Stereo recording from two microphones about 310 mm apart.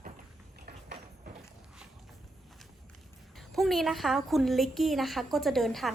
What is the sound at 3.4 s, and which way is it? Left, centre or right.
A woman's voice, centre.